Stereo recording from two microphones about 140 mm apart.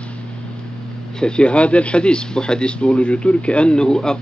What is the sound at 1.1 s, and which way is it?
Speech, 5° left (ahead or behind).